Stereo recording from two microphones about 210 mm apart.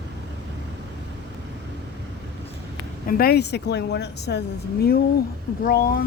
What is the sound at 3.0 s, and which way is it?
A woman's voice, 45° left (ahead or behind).